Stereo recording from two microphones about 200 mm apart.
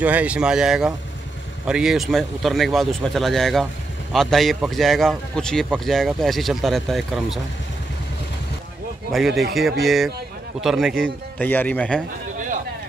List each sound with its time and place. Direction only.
0.0 s a man's voice: 5° right (ahead or behind)
9.1 s a man's voice: centre (ahead or behind)